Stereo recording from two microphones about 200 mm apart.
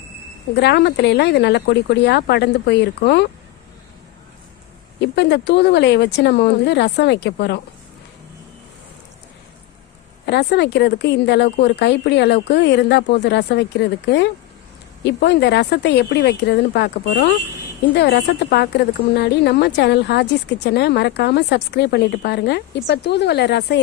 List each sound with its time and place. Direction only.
0.5 s a woman's voice: 55° left (ahead or behind)
4.9 s a woman's voice: 60° left (ahead or behind)
10.2 s a woman's voice: 55° left (ahead or behind)